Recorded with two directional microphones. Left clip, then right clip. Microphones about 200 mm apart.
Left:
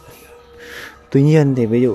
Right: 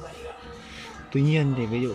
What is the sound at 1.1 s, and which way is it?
Speech, 35° left (ahead or behind).